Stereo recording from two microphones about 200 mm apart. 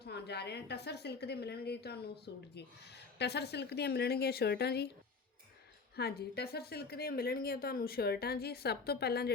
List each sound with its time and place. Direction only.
0.0 s a woman's voice: 55° left (ahead or behind)
6.0 s a woman's voice: 50° left (ahead or behind)